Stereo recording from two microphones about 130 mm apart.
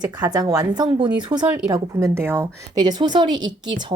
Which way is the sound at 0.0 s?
30° right (ahead or behind).